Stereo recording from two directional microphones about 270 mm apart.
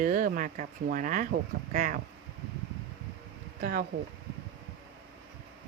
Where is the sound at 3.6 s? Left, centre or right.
Right.